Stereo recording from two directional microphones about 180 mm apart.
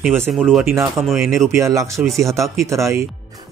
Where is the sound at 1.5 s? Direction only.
15° right (ahead or behind).